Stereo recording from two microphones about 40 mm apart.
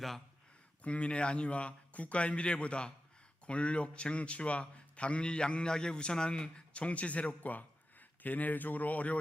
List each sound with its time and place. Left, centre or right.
0.8 s a man's voice: left
6.7 s a man's voice: left